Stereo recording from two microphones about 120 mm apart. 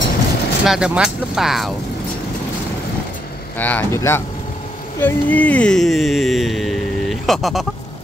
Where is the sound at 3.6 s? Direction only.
15° left (ahead or behind); by 7.7 s centre (ahead or behind).